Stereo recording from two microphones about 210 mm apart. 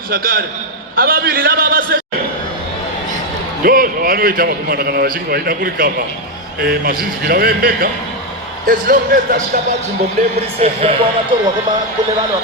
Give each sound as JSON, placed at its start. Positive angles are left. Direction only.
{"t": 0.1, "sound": "a man's voice", "side_deg": -45}
{"t": 3.6, "sound": "a man's voice", "side_deg": -45}
{"t": 10.6, "sound": "speech", "side_deg": -30}